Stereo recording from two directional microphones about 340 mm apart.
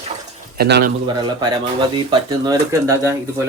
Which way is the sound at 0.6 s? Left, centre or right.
Right.